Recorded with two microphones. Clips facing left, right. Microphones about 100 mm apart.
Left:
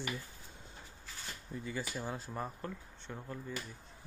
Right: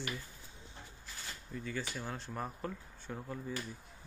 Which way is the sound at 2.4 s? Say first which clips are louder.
Even; centre (ahead or behind).